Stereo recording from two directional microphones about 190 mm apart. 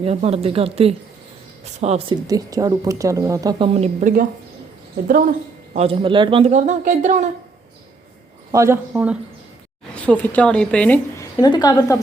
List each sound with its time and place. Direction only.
0.0 s speech: 30° right (ahead or behind)
2.2 s speech: 20° right (ahead or behind)
3.8 s speech: 40° right (ahead or behind)
5.7 s speech: 30° right (ahead or behind)
8.5 s speech: 15° right (ahead or behind)
9.9 s a woman's voice: 5° left (ahead or behind)